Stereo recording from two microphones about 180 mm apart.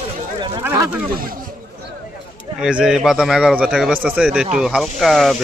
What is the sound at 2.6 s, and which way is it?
A man's voice, 5° right (ahead or behind).